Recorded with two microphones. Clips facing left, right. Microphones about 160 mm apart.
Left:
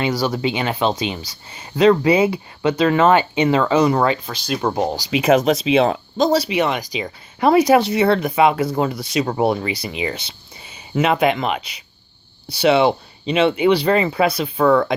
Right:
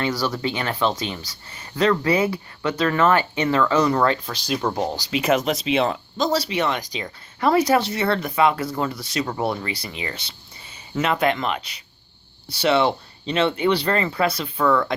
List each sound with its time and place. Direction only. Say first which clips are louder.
0.0 s speech: left 4 dB; 15° left (ahead or behind)
14.6 s speech: left 5 dB; 40° left (ahead or behind)